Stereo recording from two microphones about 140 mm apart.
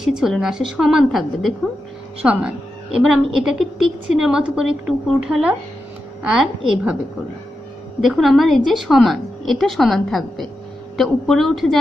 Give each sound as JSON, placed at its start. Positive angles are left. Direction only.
{"t": 0.0, "sound": "a woman's voice", "side_deg": -5}
{"t": 8.0, "sound": "a woman's voice", "side_deg": 0}